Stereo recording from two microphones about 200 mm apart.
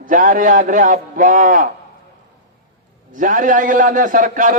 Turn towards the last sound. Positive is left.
turn(degrees=-40)  # may be behind; listen again after turning